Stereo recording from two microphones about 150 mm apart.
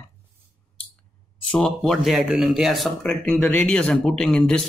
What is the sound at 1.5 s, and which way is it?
Speech, 5° left (ahead or behind).